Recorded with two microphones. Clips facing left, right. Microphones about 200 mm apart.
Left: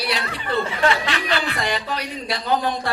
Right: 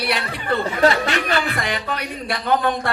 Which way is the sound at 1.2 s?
55° right (ahead or behind).